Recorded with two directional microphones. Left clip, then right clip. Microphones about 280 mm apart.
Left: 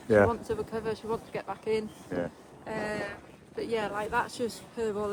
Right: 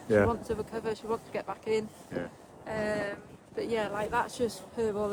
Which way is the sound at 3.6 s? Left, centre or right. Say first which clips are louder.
Even; centre.